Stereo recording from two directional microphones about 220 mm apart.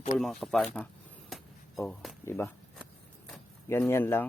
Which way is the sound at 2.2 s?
10° left (ahead or behind).